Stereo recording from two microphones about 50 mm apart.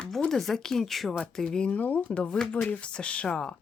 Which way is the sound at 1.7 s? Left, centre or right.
Left.